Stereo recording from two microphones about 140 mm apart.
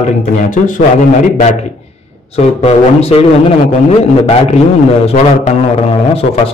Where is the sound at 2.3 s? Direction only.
45° left (ahead or behind).